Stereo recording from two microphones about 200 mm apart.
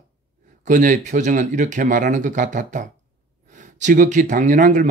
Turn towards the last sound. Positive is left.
turn(degrees=-40)  # may be behind; listen again after turning